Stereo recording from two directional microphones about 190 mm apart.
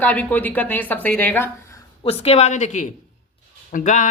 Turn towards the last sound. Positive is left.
turn(degrees=40)  # may be behind; listen again after turning